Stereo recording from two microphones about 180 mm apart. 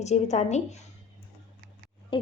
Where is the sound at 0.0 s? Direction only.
40° left (ahead or behind).